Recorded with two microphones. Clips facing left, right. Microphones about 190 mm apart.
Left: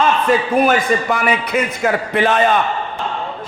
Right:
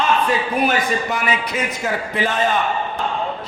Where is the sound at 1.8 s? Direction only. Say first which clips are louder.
Left 6 dB; 65° left (ahead or behind).